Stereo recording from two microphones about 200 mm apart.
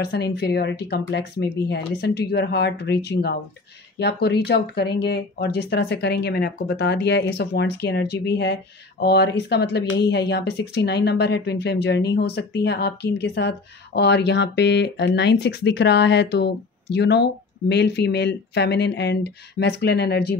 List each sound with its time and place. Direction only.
0.0 s speech: 55° left (ahead or behind)